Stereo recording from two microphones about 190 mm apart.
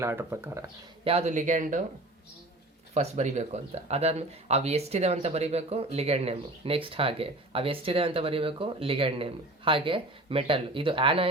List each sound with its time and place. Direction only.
0.0 s speech: 15° right (ahead or behind)
1.0 s speech: 35° right (ahead or behind)
2.9 s speech: 35° right (ahead or behind)